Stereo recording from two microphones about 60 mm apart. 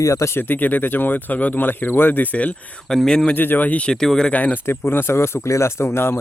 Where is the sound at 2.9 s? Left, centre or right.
Centre.